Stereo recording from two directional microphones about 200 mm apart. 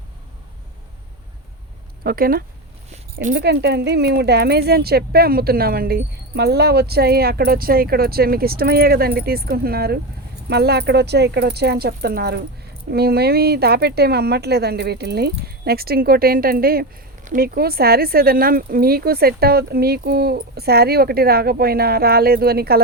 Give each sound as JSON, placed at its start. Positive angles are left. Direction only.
{"t": 2.0, "sound": "speech", "side_deg": -45}
{"t": 2.9, "sound": "a sound", "side_deg": -40}
{"t": 3.3, "sound": "speech", "side_deg": -55}